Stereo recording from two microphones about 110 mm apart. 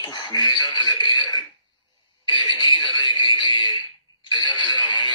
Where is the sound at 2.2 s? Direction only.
45° left (ahead or behind).